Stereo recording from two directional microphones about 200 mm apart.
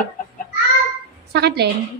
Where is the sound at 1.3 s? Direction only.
55° right (ahead or behind).